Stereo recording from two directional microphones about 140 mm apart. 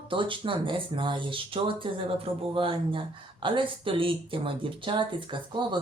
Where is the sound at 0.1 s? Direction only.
35° right (ahead or behind).